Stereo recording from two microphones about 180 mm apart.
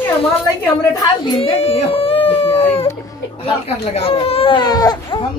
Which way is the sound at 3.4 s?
35° left (ahead or behind).